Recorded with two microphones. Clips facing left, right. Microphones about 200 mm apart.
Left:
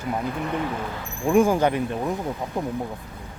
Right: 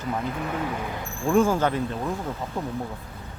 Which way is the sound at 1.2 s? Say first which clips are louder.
Left 2 dB; 15° left (ahead or behind).